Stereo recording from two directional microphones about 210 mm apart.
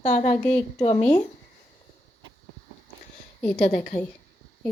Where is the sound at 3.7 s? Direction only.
40° left (ahead or behind).